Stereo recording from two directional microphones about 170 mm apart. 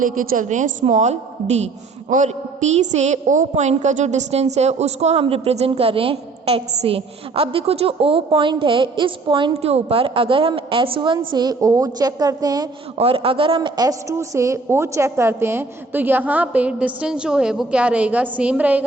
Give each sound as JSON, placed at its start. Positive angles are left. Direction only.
{"t": 0.0, "sound": "a woman's voice", "side_deg": -50}
{"t": 13.0, "sound": "a woman's voice", "side_deg": -35}